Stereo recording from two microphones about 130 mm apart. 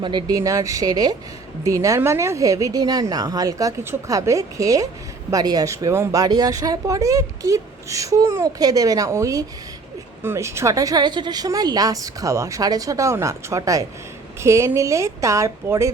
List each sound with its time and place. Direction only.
0.0 s speech: 35° right (ahead or behind); by 15.9 s 20° right (ahead or behind)